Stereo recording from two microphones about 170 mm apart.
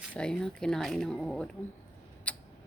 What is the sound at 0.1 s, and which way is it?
Speech, 5° left (ahead or behind).